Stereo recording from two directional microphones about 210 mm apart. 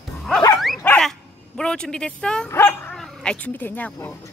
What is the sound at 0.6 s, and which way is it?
Dog, centre (ahead or behind).